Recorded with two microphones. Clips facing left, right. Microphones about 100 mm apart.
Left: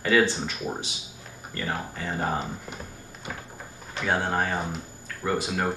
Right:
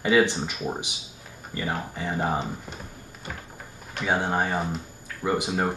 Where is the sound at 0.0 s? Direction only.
15° right (ahead or behind).